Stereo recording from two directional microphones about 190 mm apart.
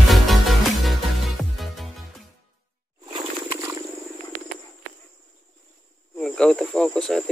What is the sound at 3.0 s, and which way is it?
Wild animals, 20° right (ahead or behind).